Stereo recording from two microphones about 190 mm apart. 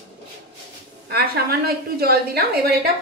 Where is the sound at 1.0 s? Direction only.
55° right (ahead or behind).